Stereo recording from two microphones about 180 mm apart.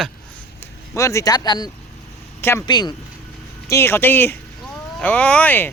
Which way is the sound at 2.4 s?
15° left (ahead or behind).